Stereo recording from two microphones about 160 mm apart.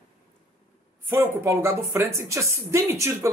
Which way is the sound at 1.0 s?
15° right (ahead or behind).